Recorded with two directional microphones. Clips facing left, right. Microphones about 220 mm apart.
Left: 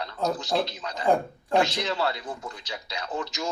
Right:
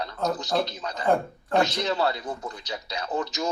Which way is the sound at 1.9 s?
40° right (ahead or behind).